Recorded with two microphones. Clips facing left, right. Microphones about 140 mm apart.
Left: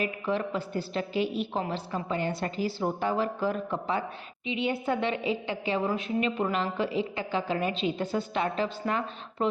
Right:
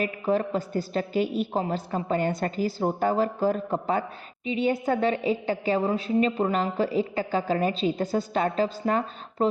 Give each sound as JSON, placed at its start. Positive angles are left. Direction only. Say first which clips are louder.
{"t": 0.0, "sound": "a woman's voice", "louder": "right 4 dB", "side_deg": -40}